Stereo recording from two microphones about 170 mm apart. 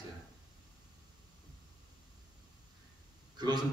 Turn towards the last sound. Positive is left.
turn(degrees=-25)  # may be behind; listen again after turning